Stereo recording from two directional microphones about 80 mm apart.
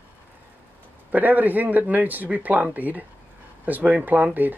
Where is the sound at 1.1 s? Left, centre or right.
Right.